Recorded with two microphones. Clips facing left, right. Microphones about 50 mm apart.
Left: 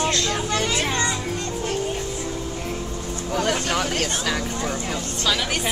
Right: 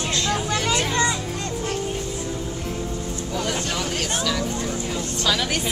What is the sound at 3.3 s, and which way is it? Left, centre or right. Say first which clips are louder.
Speech: left 4 dB; left.